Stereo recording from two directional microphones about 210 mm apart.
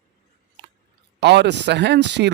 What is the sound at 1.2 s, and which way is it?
Speech, 55° right (ahead or behind).